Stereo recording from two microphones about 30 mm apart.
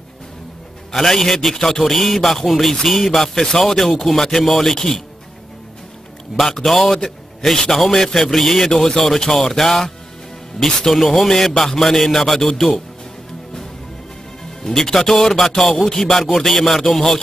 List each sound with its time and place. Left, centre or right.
0.9 s a man's voice: centre
6.6 s a man's voice: centre
14.6 s a man's voice: centre